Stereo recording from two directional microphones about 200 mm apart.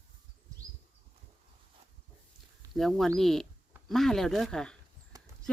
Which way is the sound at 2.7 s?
Centre (ahead or behind).